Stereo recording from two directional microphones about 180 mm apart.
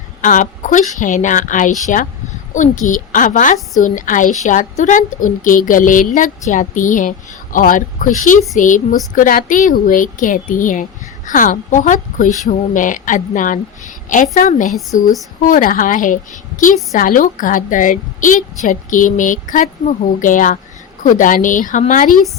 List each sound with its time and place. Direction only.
0.2 s a woman's voice: 45° left (ahead or behind)